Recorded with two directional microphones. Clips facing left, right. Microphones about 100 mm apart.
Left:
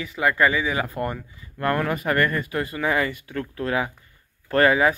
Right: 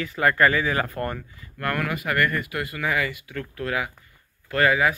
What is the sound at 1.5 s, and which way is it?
Speech, 25° left (ahead or behind).